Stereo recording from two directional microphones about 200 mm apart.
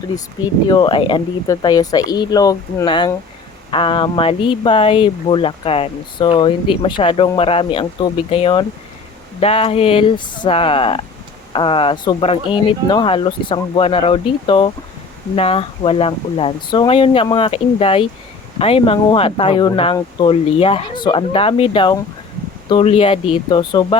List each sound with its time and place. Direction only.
0.7 s speech: 25° left (ahead or behind)